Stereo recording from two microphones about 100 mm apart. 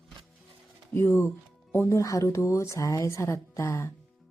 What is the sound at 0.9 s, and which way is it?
Speech, 20° left (ahead or behind).